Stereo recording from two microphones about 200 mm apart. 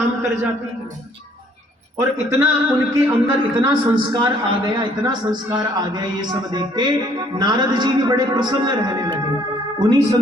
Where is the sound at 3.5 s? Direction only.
25° right (ahead or behind).